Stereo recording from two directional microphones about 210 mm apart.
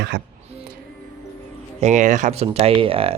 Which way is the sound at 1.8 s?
35° right (ahead or behind).